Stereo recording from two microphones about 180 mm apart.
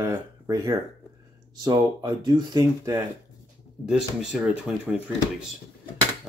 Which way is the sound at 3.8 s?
5° right (ahead or behind).